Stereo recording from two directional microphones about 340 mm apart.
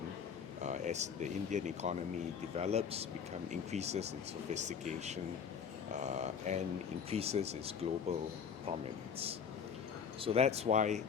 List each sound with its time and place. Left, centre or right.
0.6 s speech: right
10.2 s speech: centre